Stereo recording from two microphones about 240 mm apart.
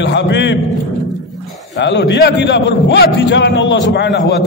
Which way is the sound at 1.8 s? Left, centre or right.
Left.